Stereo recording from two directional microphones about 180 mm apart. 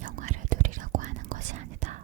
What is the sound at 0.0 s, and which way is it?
Whispering, 45° right (ahead or behind).